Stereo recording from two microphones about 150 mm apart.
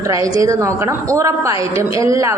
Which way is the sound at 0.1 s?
20° right (ahead or behind).